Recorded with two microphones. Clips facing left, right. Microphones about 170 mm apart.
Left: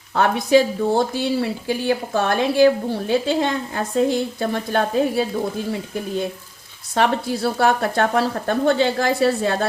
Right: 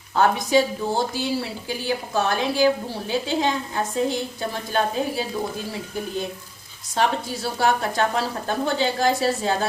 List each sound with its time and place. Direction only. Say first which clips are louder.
0.2 s speech: left 3 dB; 65° left (ahead or behind)
6.9 s speech: left 4 dB; 60° left (ahead or behind)